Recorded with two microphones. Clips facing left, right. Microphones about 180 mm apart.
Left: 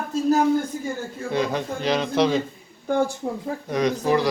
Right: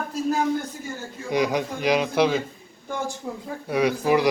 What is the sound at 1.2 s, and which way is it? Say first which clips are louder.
A man's voice: right 1 dB; 15° right (ahead or behind).